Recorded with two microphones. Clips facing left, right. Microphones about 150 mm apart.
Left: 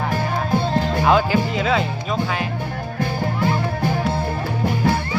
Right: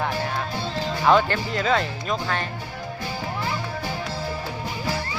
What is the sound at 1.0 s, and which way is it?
Speech, 5° left (ahead or behind).